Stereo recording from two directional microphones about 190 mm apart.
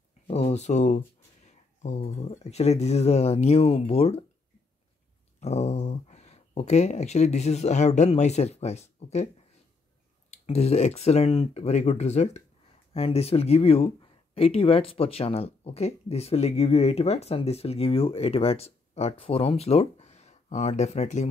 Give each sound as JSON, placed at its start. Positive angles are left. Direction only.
{"t": 0.3, "sound": "speech", "side_deg": 35}
{"t": 5.4, "sound": "speech", "side_deg": 35}
{"t": 10.3, "sound": "speech", "side_deg": 35}